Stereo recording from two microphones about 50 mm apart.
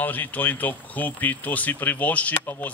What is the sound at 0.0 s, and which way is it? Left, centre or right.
Speech, left.